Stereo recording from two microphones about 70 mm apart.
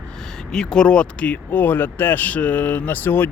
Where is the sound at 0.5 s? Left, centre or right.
Centre.